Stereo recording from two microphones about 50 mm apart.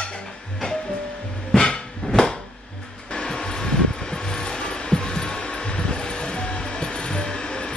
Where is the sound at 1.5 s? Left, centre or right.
Centre.